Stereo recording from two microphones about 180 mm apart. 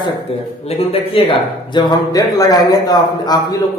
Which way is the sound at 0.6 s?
30° left (ahead or behind).